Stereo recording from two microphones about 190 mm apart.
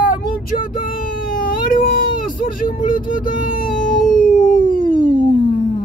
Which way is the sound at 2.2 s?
45° left (ahead or behind).